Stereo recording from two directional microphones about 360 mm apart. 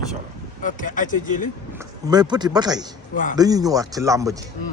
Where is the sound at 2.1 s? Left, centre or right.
Centre.